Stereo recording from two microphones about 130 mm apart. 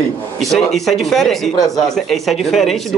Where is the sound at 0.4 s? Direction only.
Centre (ahead or behind).